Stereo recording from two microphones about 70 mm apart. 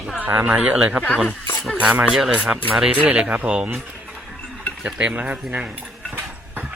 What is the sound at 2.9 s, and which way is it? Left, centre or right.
Speech, centre.